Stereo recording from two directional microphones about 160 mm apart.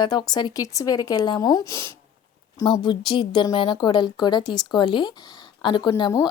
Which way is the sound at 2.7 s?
30° left (ahead or behind).